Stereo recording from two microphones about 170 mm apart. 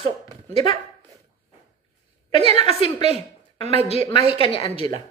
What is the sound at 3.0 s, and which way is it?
Speech, 40° right (ahead or behind).